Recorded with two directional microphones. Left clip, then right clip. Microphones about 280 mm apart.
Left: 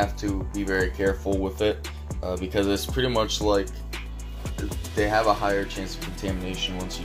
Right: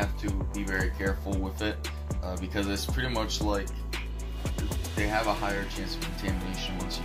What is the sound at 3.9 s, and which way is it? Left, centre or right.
Music, centre.